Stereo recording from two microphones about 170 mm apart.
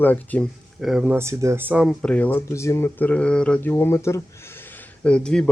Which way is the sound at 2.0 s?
10° left (ahead or behind).